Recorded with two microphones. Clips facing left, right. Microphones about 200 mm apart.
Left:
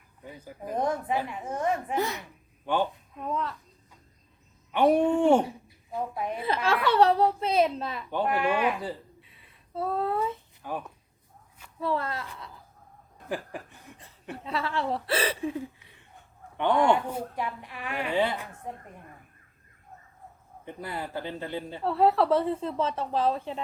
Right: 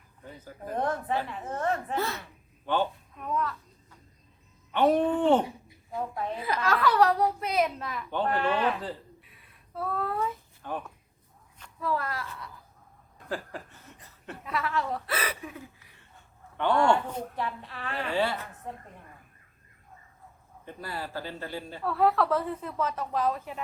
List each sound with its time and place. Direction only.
0.2 s a woman's voice: 10° left (ahead or behind)
4.7 s a woman's voice: 10° left (ahead or behind)
6.4 s a woman's voice: 30° left (ahead or behind)
8.1 s a woman's voice: 10° left (ahead or behind)
9.3 s a sound: 25° left (ahead or behind)
10.6 s speech: 10° left (ahead or behind)
11.8 s a woman's voice: 25° left (ahead or behind)
13.2 s chuckle: 15° left (ahead or behind)
14.4 s a woman's voice: 30° left (ahead or behind)
16.0 s speech: 15° left (ahead or behind)
20.7 s a woman's voice: 20° left (ahead or behind)